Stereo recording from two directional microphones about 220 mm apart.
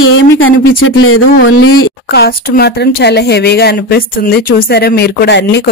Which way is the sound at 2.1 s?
45° left (ahead or behind).